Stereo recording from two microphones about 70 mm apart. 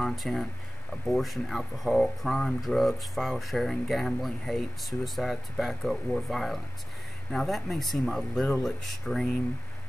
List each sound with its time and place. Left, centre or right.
0.0 s speech: centre